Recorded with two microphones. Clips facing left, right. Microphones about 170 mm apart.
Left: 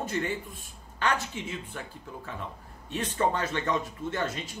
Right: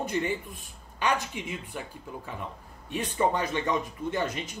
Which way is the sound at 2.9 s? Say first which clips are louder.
Right 1 dB; 15° right (ahead or behind).